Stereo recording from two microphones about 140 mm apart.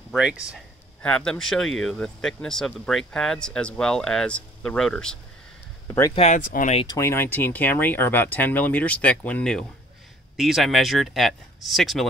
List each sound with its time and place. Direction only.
0.1 s speech: 5° right (ahead or behind)
1.0 s speech: 5° left (ahead or behind)
5.9 s speech: 20° left (ahead or behind)
6.1 s speech: 60° left (ahead or behind)
6.9 s speech: 20° left (ahead or behind); by 12.1 s centre (ahead or behind)